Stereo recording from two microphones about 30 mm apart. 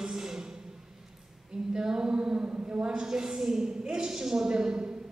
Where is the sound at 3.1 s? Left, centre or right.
Right.